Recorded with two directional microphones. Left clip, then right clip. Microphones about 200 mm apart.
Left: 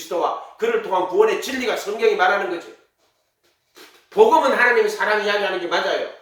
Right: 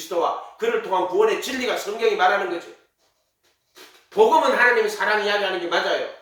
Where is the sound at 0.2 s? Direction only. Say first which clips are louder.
Even; 10° left (ahead or behind).